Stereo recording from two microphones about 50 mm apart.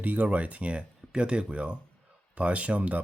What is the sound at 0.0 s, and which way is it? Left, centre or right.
Speech, right.